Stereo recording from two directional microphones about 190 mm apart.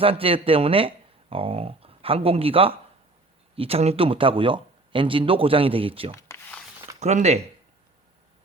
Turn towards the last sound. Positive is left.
turn(degrees=-35)  # may be behind; listen again after turning